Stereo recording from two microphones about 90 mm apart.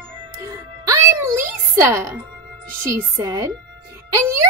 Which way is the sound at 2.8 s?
30° right (ahead or behind).